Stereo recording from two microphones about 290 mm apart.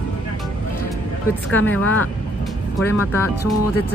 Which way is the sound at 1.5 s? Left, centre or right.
Centre.